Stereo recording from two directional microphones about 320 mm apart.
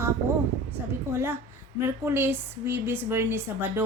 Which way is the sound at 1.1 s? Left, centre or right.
Centre.